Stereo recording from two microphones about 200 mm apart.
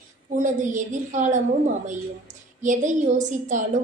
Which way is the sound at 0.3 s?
40° right (ahead or behind).